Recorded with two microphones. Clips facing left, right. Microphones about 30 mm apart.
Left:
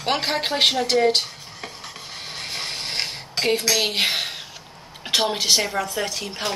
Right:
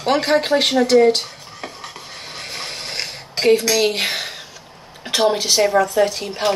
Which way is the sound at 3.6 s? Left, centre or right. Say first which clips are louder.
Right 4 dB; centre.